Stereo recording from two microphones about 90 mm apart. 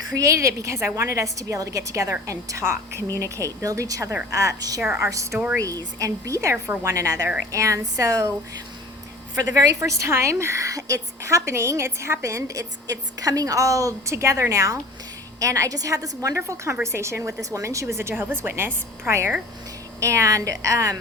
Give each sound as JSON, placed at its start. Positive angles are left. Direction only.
{"t": 0.2, "sound": "a woman's voice", "side_deg": -35}
{"t": 9.3, "sound": "a woman's voice", "side_deg": -45}